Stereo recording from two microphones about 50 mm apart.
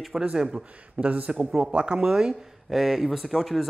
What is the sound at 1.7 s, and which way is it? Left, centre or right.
Speech, centre.